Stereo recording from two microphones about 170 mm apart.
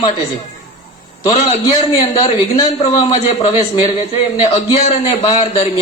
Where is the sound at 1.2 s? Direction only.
30° left (ahead or behind).